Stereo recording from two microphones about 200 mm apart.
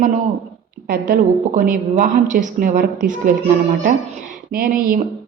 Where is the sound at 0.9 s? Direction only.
45° right (ahead or behind).